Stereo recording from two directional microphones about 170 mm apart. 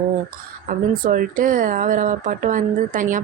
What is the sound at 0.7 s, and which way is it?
Speech, 55° right (ahead or behind).